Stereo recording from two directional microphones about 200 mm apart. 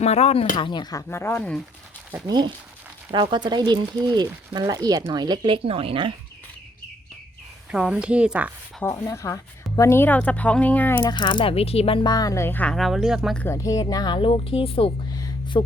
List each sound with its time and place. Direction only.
0.0 s speech: 35° left (ahead or behind); by 1.6 s 5° left (ahead or behind)
2.2 s speech: 20° right (ahead or behind)
7.7 s speech: 5° right (ahead or behind)
8.8 s speech: 15° left (ahead or behind)
11.0 s speech: 25° left (ahead or behind)